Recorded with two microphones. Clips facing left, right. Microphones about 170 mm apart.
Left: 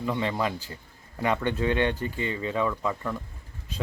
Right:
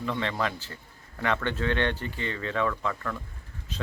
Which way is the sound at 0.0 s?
15° left (ahead or behind).